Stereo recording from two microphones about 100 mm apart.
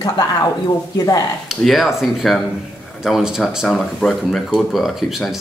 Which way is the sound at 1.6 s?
Centre (ahead or behind).